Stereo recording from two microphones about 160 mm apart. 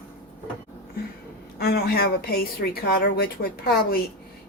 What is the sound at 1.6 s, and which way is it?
A woman's voice, 75° left (ahead or behind).